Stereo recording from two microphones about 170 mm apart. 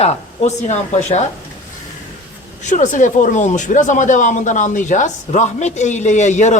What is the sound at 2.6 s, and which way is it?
Speech, 45° left (ahead or behind).